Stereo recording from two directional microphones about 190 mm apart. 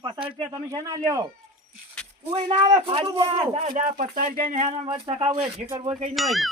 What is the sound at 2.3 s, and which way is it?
A man's voice, 35° right (ahead or behind).